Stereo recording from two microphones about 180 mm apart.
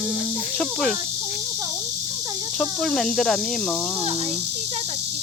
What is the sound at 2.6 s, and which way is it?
Speech, centre (ahead or behind).